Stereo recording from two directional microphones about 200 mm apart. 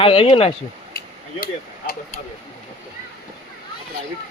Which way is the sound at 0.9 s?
45° left (ahead or behind).